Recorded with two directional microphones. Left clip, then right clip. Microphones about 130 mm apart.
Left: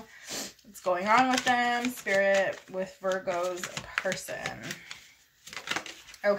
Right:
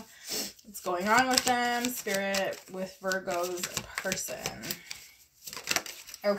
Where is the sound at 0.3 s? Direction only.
40° left (ahead or behind).